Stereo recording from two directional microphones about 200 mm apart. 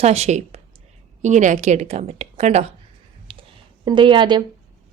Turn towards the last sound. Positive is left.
turn(degrees=-25)  # may be behind; listen again after turning